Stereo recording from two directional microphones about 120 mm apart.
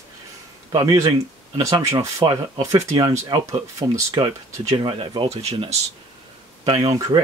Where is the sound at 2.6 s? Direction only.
25° right (ahead or behind).